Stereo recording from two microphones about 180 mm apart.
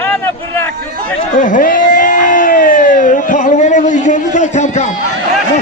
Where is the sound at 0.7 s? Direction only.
55° right (ahead or behind).